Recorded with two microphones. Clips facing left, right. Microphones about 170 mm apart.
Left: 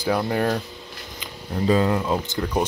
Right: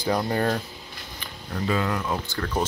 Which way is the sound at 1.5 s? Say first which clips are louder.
Left 6 dB; 30° left (ahead or behind).